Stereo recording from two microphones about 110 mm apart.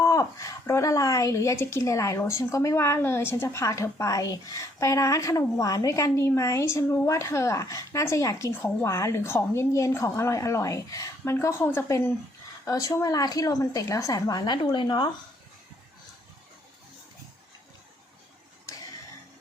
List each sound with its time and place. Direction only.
0.0 s a woman's voice: 30° left (ahead or behind)